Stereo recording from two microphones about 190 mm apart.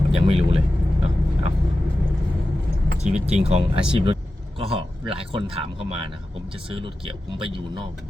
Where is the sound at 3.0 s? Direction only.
35° right (ahead or behind).